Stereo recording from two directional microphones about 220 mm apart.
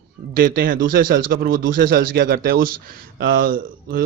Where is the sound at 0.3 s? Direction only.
40° right (ahead or behind).